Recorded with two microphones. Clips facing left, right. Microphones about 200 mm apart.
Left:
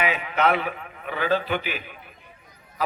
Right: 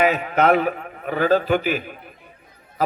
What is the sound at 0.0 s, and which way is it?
A man's voice, 45° right (ahead or behind).